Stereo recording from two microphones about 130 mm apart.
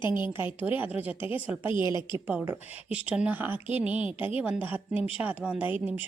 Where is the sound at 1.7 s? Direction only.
35° left (ahead or behind).